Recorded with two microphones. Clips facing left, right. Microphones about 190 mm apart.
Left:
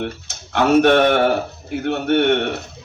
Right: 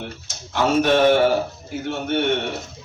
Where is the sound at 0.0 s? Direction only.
65° left (ahead or behind).